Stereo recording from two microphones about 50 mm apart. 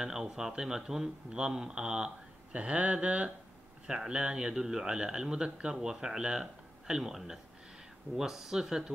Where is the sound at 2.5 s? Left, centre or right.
Right.